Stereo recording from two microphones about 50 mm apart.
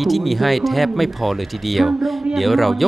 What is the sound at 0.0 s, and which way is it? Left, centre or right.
Speech, centre.